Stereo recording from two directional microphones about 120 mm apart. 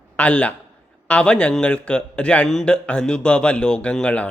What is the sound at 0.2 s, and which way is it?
Speech, 10° left (ahead or behind).